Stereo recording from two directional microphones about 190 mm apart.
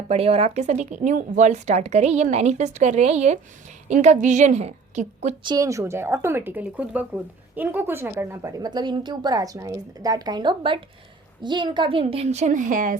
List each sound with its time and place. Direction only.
0.1 s speech: 30° right (ahead or behind)
5.5 s a woman's voice: 15° right (ahead or behind); by 13.0 s 45° right (ahead or behind)